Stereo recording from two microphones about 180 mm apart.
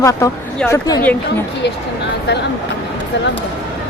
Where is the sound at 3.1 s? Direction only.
75° left (ahead or behind).